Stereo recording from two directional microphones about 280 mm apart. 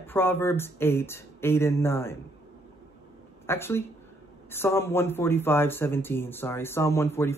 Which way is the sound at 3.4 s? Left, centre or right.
Centre.